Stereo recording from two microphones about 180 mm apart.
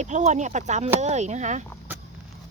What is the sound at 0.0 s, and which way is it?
A woman's voice, 40° right (ahead or behind).